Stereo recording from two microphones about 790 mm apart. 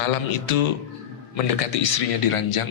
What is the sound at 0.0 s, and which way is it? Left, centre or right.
Speech, left.